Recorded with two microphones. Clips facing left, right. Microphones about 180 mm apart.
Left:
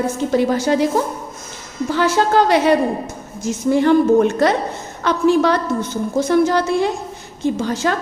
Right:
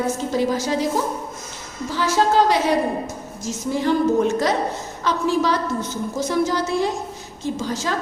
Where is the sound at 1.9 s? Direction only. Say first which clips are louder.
Left 3 dB; 60° left (ahead or behind).